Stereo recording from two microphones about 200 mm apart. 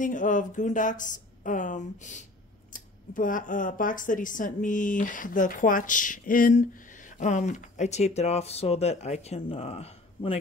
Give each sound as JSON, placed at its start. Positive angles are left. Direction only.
{"t": 0.0, "sound": "speech", "side_deg": 40}